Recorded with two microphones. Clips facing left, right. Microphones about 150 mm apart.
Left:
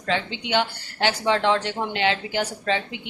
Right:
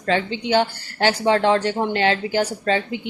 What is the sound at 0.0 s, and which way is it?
Speech, 40° right (ahead or behind).